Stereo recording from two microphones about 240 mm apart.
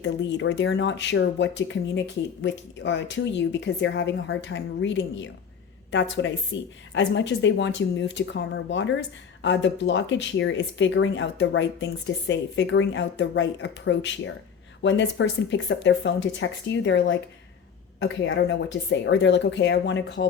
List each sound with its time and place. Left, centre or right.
0.0 s speech: left